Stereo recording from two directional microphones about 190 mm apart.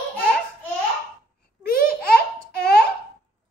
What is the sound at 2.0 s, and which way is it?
Babbling, 55° left (ahead or behind).